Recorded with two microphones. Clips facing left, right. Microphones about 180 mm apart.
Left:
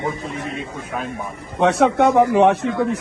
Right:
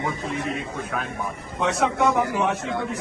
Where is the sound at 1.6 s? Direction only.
70° left (ahead or behind).